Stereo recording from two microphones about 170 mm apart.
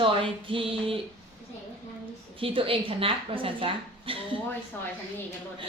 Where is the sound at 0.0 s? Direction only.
30° right (ahead or behind).